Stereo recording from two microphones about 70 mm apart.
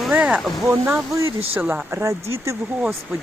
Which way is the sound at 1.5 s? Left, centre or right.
Centre.